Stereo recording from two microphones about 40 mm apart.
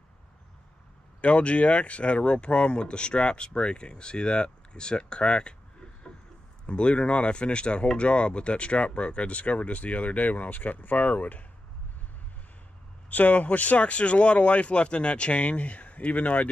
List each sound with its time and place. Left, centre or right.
1.2 s speech: left
13.1 s speech: left